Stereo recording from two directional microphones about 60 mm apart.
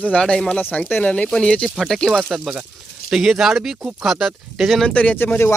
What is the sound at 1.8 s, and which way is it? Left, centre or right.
Speech, centre.